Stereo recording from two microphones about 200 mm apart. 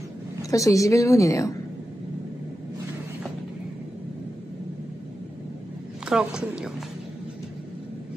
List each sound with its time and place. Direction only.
0.4 s a woman's voice: 15° left (ahead or behind)
6.0 s a woman's voice: 5° right (ahead or behind)